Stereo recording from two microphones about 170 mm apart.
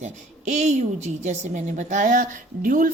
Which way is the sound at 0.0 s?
45° right (ahead or behind).